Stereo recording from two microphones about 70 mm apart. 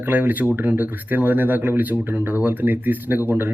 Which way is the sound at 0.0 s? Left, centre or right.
Right.